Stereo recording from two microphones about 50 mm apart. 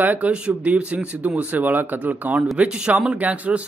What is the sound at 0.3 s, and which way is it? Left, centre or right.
Speech, right.